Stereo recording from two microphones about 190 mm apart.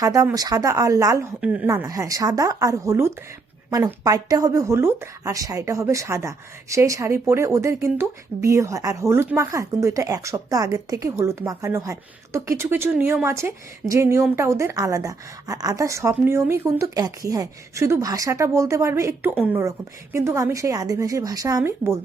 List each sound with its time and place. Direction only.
0.0 s speech: 15° right (ahead or behind)